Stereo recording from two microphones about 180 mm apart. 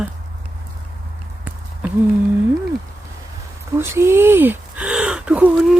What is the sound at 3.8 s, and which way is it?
Speech, 15° right (ahead or behind).